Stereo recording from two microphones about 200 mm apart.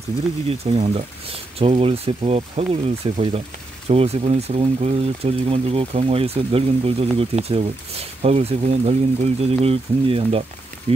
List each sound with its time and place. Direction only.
0.5 s speech: 30° right (ahead or behind)